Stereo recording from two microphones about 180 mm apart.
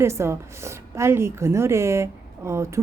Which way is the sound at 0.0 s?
15° right (ahead or behind).